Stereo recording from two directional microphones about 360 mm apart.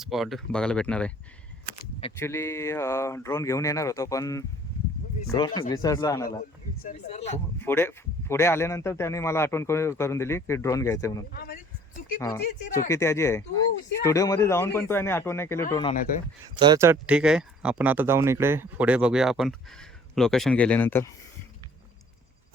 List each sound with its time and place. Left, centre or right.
0.0 s a man's voice: centre
7.6 s a man's voice: centre
11.3 s speech: left
12.9 s a man's voice: centre
16.6 s speech: centre